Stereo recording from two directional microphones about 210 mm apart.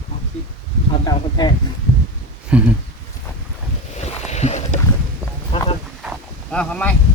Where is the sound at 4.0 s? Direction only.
35° left (ahead or behind).